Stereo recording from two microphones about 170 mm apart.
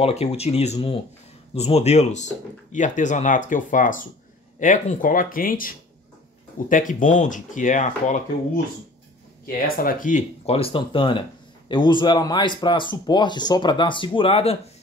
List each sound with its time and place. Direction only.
0.0 s speech: 35° left (ahead or behind)
9.8 s speech: 55° left (ahead or behind); by 14.6 s 35° left (ahead or behind)